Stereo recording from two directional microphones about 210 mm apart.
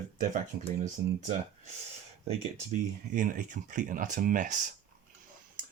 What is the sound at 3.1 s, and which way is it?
Speech, 40° right (ahead or behind).